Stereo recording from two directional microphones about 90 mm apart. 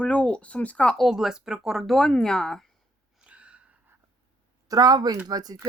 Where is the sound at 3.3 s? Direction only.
15° right (ahead or behind).